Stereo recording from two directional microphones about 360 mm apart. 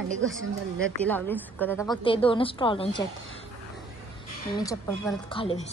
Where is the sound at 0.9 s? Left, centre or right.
Centre.